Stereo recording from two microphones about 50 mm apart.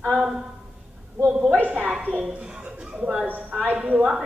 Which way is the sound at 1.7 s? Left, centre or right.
Right.